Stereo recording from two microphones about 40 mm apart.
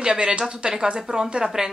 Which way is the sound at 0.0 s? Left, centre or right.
Right.